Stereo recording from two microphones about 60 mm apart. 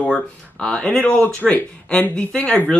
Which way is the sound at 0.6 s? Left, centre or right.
Centre.